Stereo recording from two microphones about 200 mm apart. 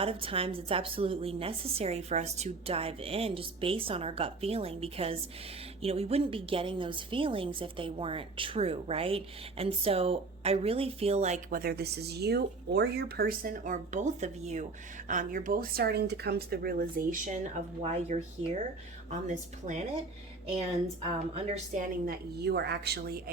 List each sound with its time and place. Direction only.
0.0 s a woman's voice: 25° right (ahead or behind)
21.0 s a woman's voice: 30° right (ahead or behind)
22.0 s a woman's voice: 50° right (ahead or behind)